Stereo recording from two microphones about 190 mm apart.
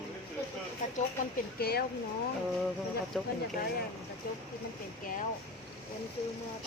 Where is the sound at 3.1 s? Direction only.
Centre (ahead or behind).